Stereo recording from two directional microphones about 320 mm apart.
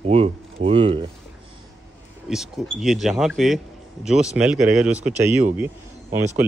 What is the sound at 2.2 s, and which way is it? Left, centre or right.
Speech, centre.